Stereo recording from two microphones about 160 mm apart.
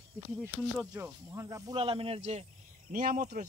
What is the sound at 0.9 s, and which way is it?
Speech, 15° right (ahead or behind).